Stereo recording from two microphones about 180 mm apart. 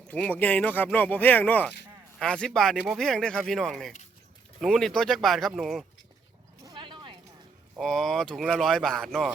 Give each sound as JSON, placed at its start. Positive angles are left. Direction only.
{"t": 0.1, "sound": "speech", "side_deg": 10}
{"t": 6.6, "sound": "a sound", "side_deg": -25}
{"t": 7.8, "sound": "speech", "side_deg": 5}